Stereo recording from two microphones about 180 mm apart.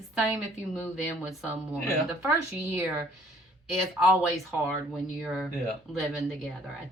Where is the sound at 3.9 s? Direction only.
5° right (ahead or behind).